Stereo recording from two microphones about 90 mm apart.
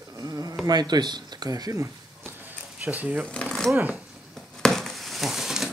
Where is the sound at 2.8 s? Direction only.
20° right (ahead or behind).